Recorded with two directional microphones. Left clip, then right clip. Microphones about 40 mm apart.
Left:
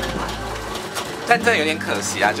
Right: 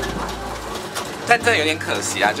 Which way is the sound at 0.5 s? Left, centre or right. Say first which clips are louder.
Left 1 dB; left.